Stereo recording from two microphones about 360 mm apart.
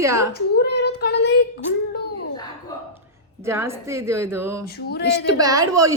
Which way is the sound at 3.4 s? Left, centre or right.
Centre.